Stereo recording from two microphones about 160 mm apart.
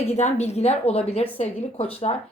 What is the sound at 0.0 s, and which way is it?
A woman's voice, 45° left (ahead or behind).